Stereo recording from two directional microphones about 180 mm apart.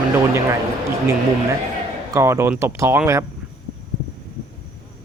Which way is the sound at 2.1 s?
15° right (ahead or behind).